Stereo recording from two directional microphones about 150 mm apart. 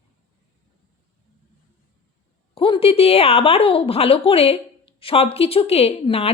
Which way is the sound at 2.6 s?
35° left (ahead or behind).